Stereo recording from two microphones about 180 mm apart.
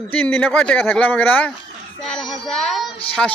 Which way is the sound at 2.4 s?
5° left (ahead or behind).